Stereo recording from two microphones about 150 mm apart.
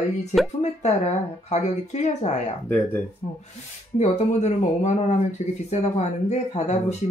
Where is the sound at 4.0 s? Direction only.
50° left (ahead or behind).